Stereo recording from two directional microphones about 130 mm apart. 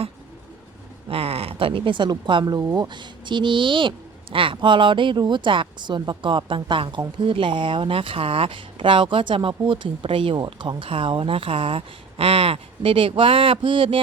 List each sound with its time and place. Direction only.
1.1 s speech: 45° right (ahead or behind)